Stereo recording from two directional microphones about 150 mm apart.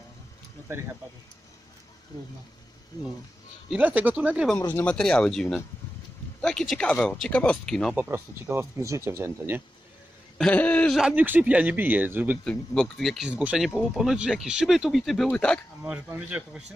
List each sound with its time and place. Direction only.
3.7 s speech: 10° right (ahead or behind)
4.7 s speech: 5° left (ahead or behind)
7.9 s speech: 15° right (ahead or behind)
10.3 s a sound: 5° left (ahead or behind)
11.0 s speech: 10° right (ahead or behind)
12.4 s speech: 5° left (ahead or behind)
15.8 s speech: 10° right (ahead or behind)